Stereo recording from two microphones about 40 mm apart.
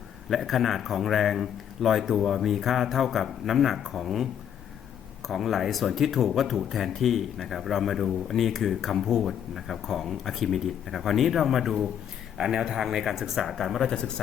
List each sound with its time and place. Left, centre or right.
0.3 s speech: centre
12.4 s speech: centre
13.8 s speech: centre